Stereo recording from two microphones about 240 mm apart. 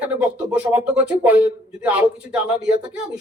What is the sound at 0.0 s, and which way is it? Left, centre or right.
Speech, centre.